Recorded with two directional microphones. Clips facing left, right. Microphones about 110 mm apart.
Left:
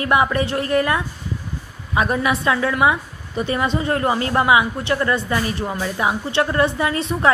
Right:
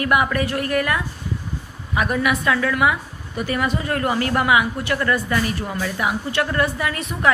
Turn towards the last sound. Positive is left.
turn(degrees=30)  # may be behind; listen again after turning